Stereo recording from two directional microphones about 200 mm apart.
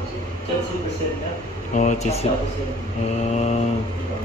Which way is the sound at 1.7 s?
40° left (ahead or behind).